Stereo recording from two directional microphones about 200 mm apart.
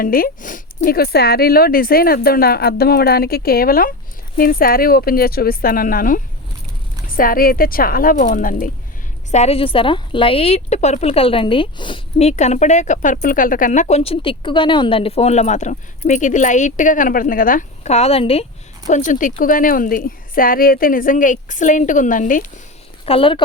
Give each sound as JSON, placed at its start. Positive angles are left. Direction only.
{"t": 0.0, "sound": "speech", "side_deg": 45}
{"t": 9.3, "sound": "speech", "side_deg": 30}
{"t": 23.0, "sound": "speech", "side_deg": 25}